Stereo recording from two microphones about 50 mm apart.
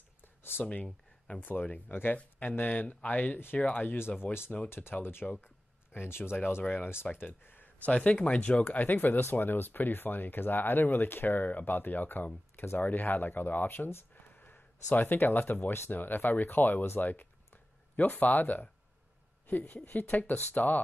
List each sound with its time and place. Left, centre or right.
0.4 s a sound: left
0.8 s a sound: centre
1.4 s speech: left
2.5 s speech: left
4.2 s speech: left
5.2 s speech: centre
5.9 s speech: left
7.8 s speech: left
9.0 s speech: left
19.7 s speech: left